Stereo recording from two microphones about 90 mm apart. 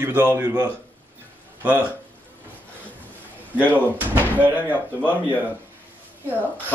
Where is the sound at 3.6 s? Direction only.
20° right (ahead or behind).